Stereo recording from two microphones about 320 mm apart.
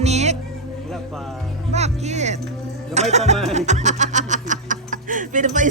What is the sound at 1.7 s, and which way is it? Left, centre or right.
A woman's voice, right.